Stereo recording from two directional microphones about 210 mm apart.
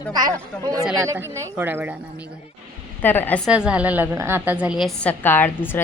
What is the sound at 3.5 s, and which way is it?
A woman's voice, 5° right (ahead or behind).